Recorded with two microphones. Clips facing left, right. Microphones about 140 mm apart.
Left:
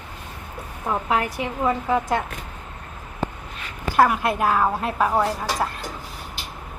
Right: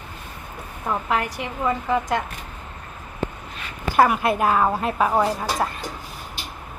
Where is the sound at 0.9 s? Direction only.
10° left (ahead or behind).